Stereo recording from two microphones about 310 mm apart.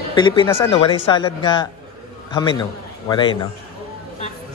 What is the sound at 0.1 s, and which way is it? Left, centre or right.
Speech, centre.